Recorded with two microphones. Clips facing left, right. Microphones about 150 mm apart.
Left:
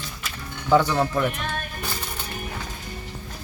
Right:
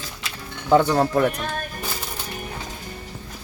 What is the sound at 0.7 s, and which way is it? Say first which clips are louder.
Speech: right 2 dB; 35° right (ahead or behind).